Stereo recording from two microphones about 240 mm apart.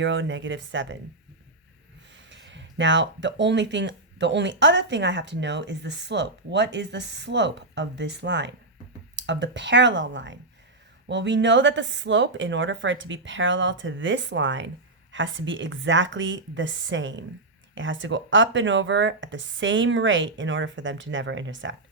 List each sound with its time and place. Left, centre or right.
0.0 s speech: right
2.1 s speech: right